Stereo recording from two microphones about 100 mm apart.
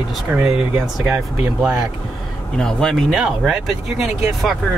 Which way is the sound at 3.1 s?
5° right (ahead or behind).